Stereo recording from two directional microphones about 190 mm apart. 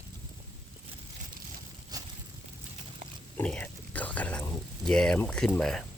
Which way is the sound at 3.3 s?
5° left (ahead or behind).